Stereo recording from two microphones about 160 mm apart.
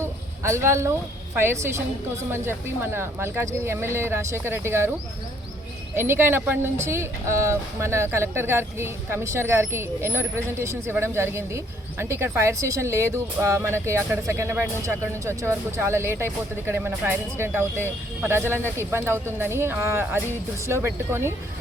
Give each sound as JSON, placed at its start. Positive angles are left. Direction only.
{"t": 0.0, "sound": "a sound", "side_deg": -15}
{"t": 1.4, "sound": "speech", "side_deg": -15}
{"t": 6.0, "sound": "speech", "side_deg": -15}